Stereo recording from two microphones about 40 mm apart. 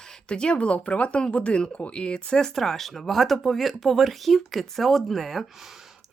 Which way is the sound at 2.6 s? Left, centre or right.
Centre.